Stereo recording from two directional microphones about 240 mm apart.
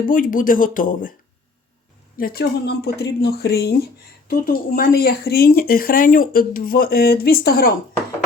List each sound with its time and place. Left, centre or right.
0.1 s speech: left
2.1 s speech: left